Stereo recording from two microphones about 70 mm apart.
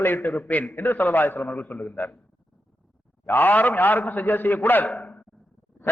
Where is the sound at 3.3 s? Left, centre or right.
Left.